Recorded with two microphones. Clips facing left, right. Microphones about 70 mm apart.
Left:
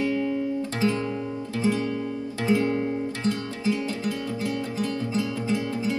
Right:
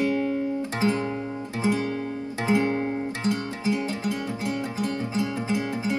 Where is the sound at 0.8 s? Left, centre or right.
Right.